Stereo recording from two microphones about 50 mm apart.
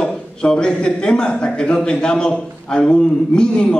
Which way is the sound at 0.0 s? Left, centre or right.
Centre.